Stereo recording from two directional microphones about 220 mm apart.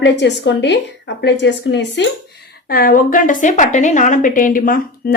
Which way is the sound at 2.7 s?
40° left (ahead or behind).